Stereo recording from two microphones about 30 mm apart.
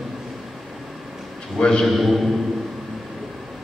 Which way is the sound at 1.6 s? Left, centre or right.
Left.